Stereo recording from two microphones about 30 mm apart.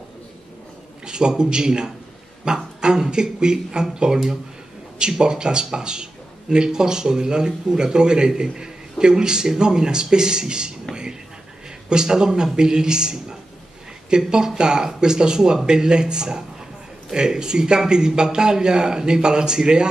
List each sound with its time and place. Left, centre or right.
1.0 s speech: right
11.9 s speech: right